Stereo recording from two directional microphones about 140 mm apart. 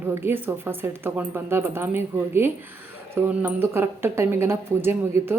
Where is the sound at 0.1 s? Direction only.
15° right (ahead or behind).